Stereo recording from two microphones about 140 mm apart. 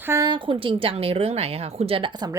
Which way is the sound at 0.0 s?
20° right (ahead or behind).